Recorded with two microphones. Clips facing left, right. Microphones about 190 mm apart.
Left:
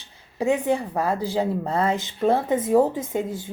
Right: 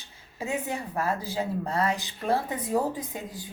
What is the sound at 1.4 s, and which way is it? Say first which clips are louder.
Speech: left 3 dB; 25° left (ahead or behind).